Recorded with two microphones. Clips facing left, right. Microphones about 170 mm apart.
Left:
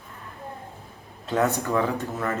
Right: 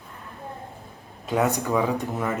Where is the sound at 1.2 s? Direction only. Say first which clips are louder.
Even; 15° right (ahead or behind).